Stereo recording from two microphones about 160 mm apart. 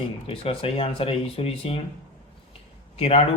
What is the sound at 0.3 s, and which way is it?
Speech, 35° left (ahead or behind).